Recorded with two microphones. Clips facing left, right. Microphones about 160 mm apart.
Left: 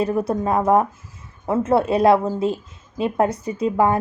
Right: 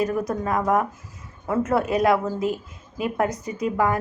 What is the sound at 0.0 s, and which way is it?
A woman's voice, 30° left (ahead or behind).